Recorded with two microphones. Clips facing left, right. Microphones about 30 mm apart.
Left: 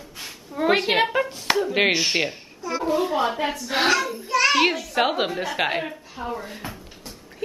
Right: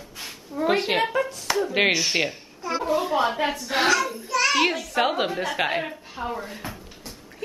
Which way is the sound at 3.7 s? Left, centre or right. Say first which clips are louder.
Left 1 dB; centre.